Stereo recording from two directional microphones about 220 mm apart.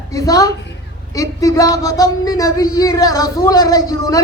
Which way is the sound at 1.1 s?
15° left (ahead or behind).